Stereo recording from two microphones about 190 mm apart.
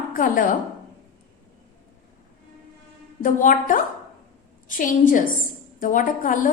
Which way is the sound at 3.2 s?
45° left (ahead or behind).